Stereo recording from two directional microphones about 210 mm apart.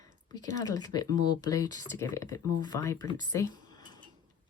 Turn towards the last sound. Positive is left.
turn(degrees=15)  # may be behind; listen again after turning